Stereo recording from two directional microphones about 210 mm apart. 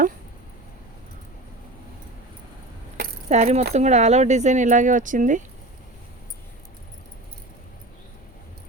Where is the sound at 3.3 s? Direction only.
30° right (ahead or behind).